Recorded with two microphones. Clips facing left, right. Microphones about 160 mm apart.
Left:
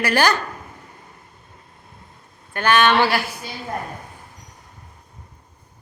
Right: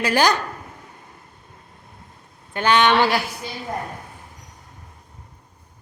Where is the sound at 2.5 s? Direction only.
15° right (ahead or behind).